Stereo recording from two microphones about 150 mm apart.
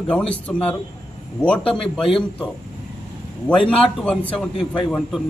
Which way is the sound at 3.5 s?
10° left (ahead or behind).